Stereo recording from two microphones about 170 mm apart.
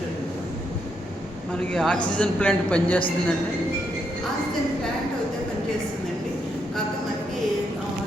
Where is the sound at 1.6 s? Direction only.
5° left (ahead or behind).